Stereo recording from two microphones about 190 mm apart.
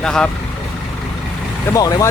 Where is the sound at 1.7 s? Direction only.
15° left (ahead or behind).